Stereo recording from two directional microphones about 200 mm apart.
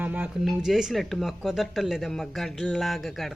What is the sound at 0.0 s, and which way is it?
Speech, 10° right (ahead or behind).